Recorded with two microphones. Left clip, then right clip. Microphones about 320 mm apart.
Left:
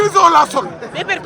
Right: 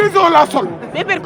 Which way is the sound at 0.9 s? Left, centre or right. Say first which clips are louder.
Right 2 dB; right.